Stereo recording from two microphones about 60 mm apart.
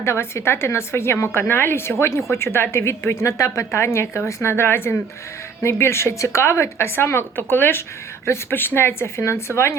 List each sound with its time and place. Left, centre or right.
0.0 s a woman's voice: left